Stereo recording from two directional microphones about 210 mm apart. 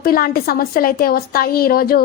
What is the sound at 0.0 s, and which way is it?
Speech, 45° left (ahead or behind).